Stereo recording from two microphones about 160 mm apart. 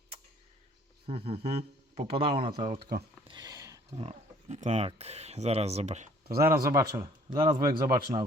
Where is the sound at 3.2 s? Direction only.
25° right (ahead or behind).